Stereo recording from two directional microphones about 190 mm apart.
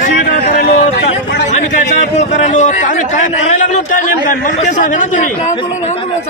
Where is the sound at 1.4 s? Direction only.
40° left (ahead or behind).